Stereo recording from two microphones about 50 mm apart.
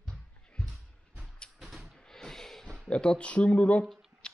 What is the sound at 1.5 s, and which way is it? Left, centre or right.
Music, centre.